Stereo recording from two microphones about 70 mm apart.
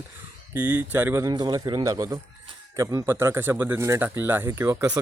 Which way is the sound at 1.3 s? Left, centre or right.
Right.